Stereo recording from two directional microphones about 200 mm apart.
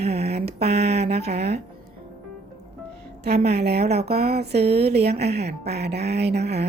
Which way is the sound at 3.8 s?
30° right (ahead or behind).